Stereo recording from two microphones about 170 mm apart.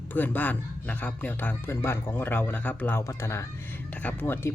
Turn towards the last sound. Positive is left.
turn(degrees=15)  # may be behind; listen again after turning